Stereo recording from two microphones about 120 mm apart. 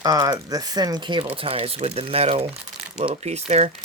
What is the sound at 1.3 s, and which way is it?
Speech, 55° right (ahead or behind).